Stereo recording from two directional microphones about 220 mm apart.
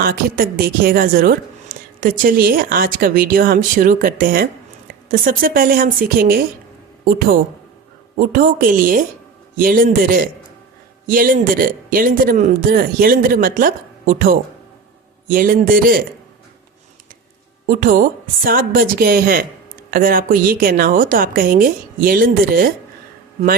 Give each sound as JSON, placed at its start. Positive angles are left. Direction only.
{"t": 0.0, "sound": "a woman's voice", "side_deg": -45}
{"t": 8.3, "sound": "a woman's voice", "side_deg": -40}
{"t": 17.7, "sound": "a woman's voice", "side_deg": -40}